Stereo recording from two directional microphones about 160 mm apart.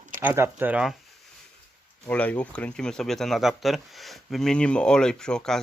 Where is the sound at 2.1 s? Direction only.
10° left (ahead or behind).